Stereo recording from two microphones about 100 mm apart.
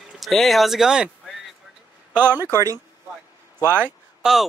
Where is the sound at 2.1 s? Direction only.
20° right (ahead or behind).